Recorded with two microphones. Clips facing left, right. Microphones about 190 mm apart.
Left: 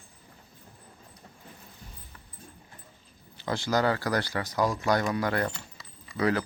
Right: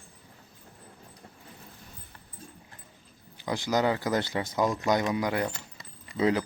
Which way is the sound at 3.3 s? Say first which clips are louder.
Even; 15° right (ahead or behind).